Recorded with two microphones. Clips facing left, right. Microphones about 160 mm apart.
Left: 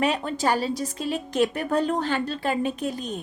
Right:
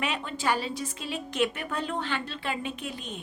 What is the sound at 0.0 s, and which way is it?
A woman's voice, 40° left (ahead or behind).